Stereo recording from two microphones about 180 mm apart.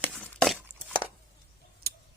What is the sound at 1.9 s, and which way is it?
Tick-tock, 60° right (ahead or behind).